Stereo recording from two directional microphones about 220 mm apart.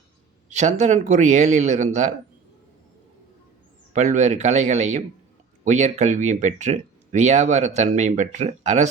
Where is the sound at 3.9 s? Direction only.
35° right (ahead or behind).